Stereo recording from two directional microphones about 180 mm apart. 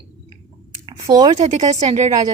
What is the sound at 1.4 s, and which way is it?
Speech, 40° right (ahead or behind).